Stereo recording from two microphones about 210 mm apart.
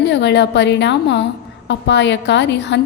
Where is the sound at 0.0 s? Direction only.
55° left (ahead or behind).